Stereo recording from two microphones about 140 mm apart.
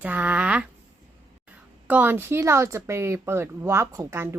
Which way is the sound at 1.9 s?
15° right (ahead or behind).